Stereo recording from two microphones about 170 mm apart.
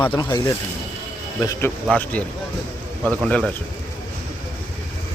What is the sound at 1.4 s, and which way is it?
Speech, 20° left (ahead or behind).